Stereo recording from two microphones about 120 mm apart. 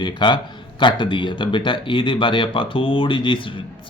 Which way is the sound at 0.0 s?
40° left (ahead or behind).